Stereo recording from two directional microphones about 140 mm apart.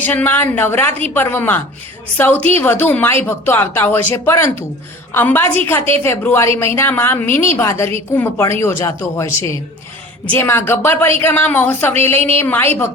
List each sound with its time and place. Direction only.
0.0 s a woman's voice: 10° left (ahead or behind)
0.9 s a woman's voice: 50° right (ahead or behind)
1.1 s a woman's voice: 15° left (ahead or behind)
10.3 s a woman's voice: 15° left (ahead or behind)